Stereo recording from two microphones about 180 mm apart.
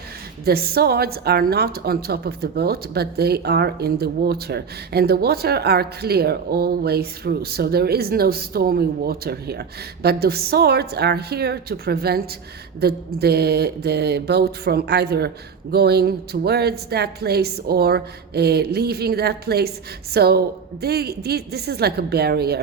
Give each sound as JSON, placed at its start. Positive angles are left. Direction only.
{"t": 0.4, "sound": "a woman's voice", "side_deg": -60}